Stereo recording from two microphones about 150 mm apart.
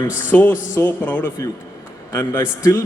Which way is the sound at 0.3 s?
10° left (ahead or behind).